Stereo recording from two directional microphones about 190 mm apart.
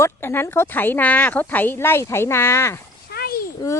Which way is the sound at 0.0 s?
10° left (ahead or behind).